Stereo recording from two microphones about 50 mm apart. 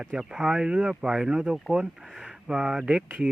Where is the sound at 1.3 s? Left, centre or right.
Right.